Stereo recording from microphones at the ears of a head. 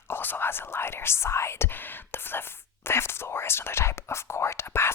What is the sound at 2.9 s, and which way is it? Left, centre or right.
Whispering, left.